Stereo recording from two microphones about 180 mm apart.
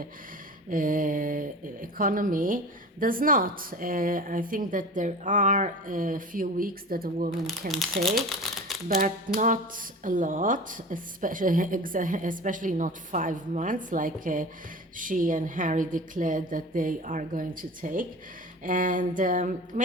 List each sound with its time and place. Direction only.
0.7 s speech: 50° right (ahead or behind)
7.7 s speech: centre (ahead or behind)
9.4 s speech: 45° right (ahead or behind)